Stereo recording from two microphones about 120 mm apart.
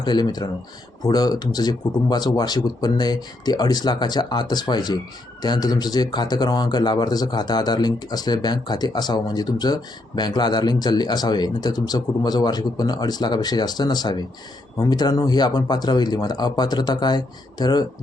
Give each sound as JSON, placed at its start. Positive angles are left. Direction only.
{"t": 0.0, "sound": "speech", "side_deg": 35}